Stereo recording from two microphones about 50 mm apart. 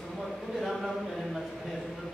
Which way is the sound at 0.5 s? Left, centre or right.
Centre.